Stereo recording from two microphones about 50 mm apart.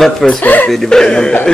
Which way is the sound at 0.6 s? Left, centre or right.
Centre.